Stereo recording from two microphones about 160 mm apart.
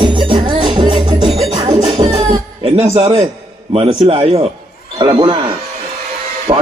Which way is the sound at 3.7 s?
35° right (ahead or behind).